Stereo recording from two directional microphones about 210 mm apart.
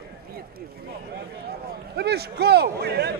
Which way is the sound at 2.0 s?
50° right (ahead or behind).